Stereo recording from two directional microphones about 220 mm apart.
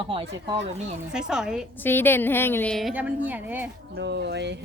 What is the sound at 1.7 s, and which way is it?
A woman's voice, 10° left (ahead or behind).